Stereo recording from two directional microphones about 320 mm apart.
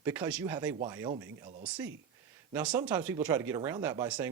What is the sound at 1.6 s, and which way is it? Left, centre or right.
Speech, centre.